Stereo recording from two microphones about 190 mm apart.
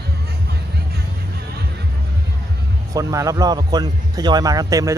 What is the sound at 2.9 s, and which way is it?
A man's voice, 15° right (ahead or behind).